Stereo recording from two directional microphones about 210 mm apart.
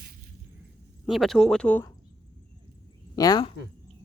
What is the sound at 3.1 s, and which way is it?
Speech, 20° left (ahead or behind).